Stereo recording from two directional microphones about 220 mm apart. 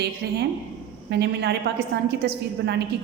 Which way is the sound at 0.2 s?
50° right (ahead or behind).